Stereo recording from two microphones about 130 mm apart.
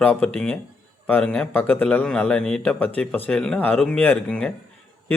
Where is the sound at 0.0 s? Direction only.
15° left (ahead or behind).